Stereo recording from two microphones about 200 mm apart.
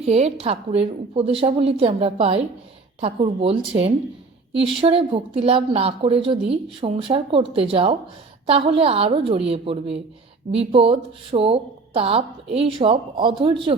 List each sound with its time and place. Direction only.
0.0 s a woman's voice: 30° right (ahead or behind)